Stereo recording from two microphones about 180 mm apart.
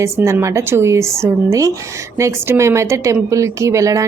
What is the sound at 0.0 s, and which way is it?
A woman's voice, 15° right (ahead or behind).